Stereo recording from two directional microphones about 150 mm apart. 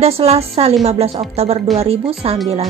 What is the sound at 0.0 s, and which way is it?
A woman's voice, 45° right (ahead or behind).